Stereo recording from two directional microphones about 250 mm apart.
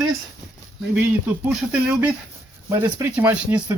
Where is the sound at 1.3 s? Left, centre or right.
Centre.